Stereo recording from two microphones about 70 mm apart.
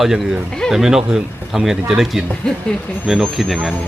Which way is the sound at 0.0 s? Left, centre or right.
Centre.